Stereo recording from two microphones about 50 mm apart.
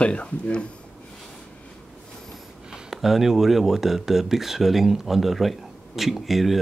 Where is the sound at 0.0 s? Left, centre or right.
Left.